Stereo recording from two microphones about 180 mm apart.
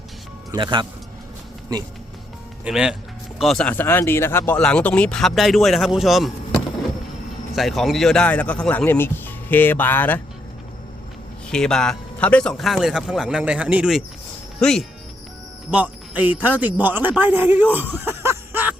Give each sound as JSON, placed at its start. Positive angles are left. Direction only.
{"t": 0.5, "sound": "speech", "side_deg": -25}
{"t": 2.6, "sound": "speech", "side_deg": -5}
{"t": 11.5, "sound": "speech", "side_deg": 5}
{"t": 15.7, "sound": "speech", "side_deg": -10}
{"t": 17.7, "sound": "a sound", "side_deg": -10}